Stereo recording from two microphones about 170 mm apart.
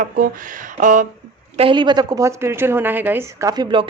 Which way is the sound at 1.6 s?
30° right (ahead or behind).